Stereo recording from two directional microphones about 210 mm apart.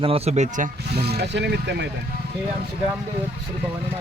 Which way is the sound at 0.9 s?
50° right (ahead or behind).